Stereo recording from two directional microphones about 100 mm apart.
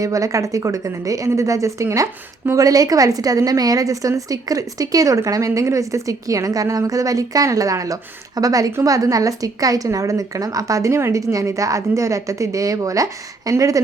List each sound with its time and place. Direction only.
0.0 s a woman's voice: 35° right (ahead or behind)